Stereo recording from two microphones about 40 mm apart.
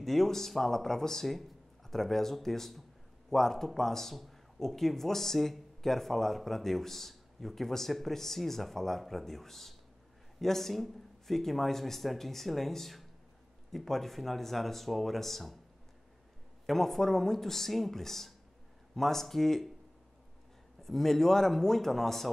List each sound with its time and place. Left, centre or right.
0.0 s a man's voice: centre
16.6 s a man's voice: centre
20.8 s a man's voice: centre